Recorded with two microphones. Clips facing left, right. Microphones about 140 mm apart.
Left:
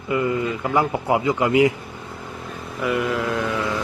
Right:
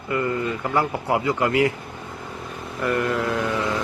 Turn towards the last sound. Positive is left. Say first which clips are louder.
# even
turn(degrees=0)  # may be behind; listen again after turning